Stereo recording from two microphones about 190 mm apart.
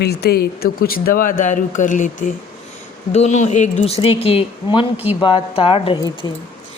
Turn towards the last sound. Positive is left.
turn(degrees=30)  # may be behind; listen again after turning